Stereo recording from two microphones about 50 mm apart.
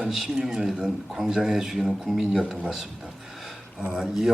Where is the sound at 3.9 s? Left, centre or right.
Centre.